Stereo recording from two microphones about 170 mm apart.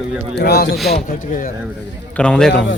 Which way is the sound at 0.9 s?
50° left (ahead or behind).